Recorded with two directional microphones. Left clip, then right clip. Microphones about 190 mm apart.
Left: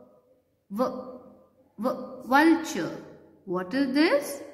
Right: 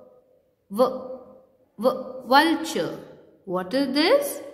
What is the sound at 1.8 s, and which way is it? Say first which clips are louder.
Mantra: right 7 dB; 25° right (ahead or behind).